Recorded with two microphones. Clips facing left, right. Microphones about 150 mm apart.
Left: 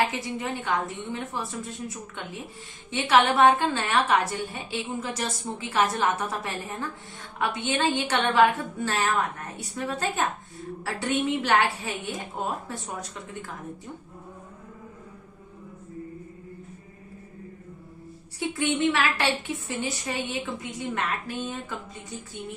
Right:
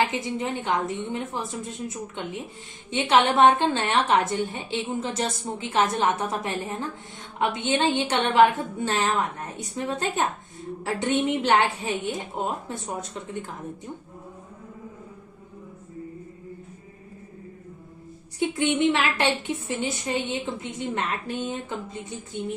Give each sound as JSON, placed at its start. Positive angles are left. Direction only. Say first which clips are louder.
{"t": 0.1, "sound": "a woman's voice", "louder": "right 3 dB", "side_deg": -20}
{"t": 18.3, "sound": "a woman's voice", "louder": "right 3 dB", "side_deg": -20}